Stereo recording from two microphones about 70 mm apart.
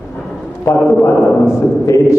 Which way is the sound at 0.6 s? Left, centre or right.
Left.